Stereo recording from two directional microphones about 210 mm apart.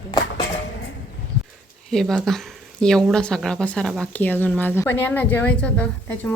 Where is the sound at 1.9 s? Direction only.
Centre (ahead or behind).